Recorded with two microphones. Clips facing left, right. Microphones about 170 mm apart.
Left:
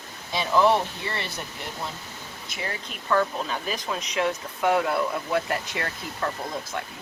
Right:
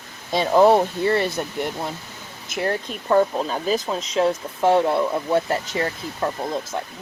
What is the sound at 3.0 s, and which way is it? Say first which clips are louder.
Speech: right 6 dB; 30° right (ahead or behind).